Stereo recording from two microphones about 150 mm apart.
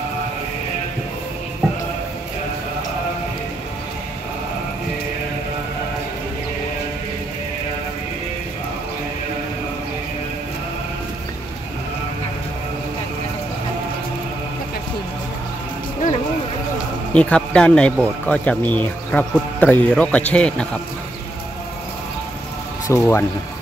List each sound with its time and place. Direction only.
17.1 s speech: 10° left (ahead or behind)
22.8 s speech: 20° left (ahead or behind)